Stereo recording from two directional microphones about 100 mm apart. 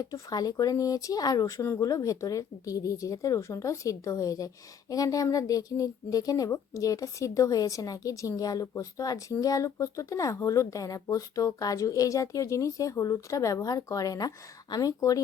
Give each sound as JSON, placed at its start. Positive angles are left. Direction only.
{"t": 0.0, "sound": "speech", "side_deg": 35}